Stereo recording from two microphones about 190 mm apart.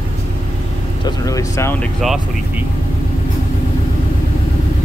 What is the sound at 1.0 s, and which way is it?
Speech, 15° left (ahead or behind).